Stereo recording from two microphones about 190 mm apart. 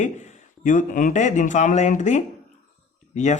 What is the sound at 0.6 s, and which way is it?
Speech, 45° left (ahead or behind).